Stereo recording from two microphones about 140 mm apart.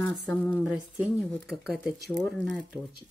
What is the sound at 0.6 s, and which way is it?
Speech, 5° right (ahead or behind).